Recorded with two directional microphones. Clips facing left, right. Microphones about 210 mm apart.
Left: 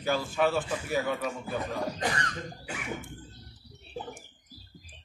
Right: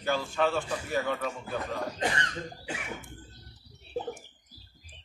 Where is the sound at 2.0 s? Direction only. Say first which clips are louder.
Right 1 dB; 25° right (ahead or behind).